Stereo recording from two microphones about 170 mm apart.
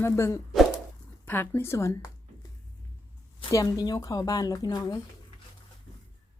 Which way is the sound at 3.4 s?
25° left (ahead or behind).